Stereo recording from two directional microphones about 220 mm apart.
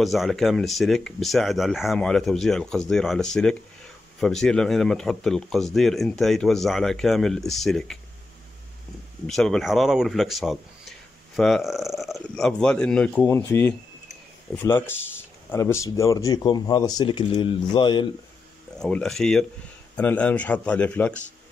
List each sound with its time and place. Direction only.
0.0 s speech: centre (ahead or behind)
9.2 s a man's voice: centre (ahead or behind); by 18.0 s 20° left (ahead or behind)
18.8 s speech: 5° left (ahead or behind)